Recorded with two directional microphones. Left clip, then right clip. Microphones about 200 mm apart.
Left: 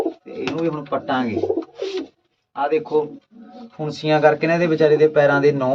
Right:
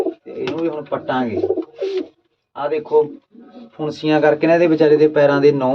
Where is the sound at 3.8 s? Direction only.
15° right (ahead or behind).